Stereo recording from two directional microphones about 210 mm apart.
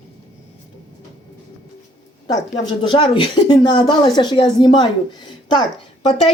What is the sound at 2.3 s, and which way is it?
Speech, 20° left (ahead or behind).